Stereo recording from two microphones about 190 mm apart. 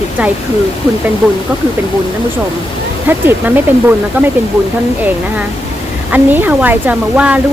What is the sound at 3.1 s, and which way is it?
Speech, 10° right (ahead or behind).